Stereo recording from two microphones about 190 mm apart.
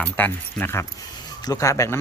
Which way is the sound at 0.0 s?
10° left (ahead or behind).